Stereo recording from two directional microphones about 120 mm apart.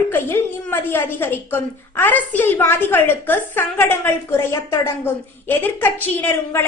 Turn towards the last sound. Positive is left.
turn(degrees=15)  # may be behind; listen again after turning